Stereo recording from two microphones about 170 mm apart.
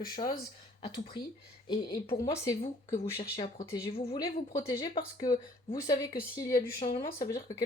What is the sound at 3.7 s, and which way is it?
Speech, 25° left (ahead or behind).